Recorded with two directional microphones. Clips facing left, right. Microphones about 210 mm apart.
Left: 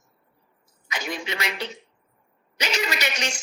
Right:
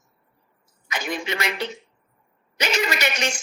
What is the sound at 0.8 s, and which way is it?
A woman's voice, 50° right (ahead or behind).